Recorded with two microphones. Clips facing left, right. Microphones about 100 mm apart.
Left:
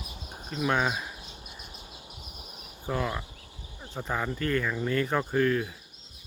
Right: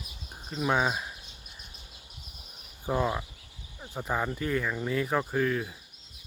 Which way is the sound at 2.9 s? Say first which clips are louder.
Right 2 dB; 20° right (ahead or behind).